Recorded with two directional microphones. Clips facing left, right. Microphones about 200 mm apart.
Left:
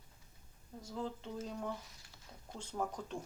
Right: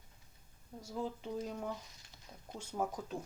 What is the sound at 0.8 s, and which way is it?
Speech, 10° right (ahead or behind).